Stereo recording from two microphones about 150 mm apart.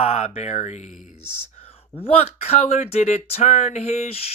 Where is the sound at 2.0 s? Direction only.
40° left (ahead or behind).